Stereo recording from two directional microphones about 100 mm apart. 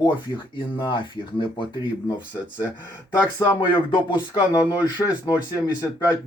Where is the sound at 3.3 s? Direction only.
30° left (ahead or behind).